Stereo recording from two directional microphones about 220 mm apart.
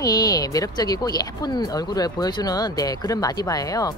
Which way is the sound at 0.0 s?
15° left (ahead or behind).